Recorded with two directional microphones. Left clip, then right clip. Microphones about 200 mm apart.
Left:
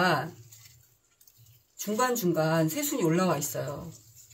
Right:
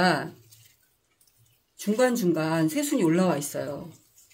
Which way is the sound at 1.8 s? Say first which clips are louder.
Right 4 dB; 40° right (ahead or behind).